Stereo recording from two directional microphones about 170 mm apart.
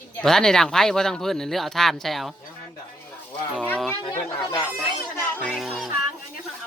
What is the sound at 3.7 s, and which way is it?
Speech, 5° left (ahead or behind).